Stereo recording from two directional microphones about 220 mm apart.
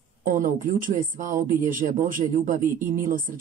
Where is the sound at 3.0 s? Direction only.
35° right (ahead or behind).